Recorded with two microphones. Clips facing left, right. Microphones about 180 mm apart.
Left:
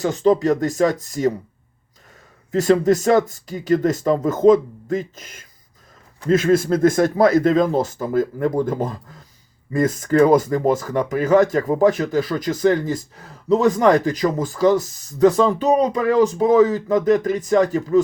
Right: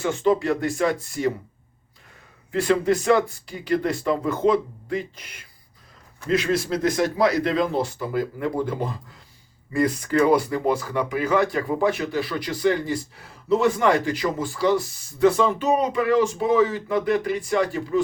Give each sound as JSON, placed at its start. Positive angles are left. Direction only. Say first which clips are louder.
{"t": 0.0, "sound": "speech", "louder": "left 4 dB", "side_deg": 40}
{"t": 2.5, "sound": "speech", "louder": "left 5 dB", "side_deg": 40}